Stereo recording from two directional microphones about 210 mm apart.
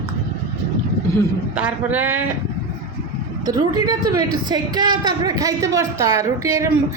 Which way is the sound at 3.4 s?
20° right (ahead or behind).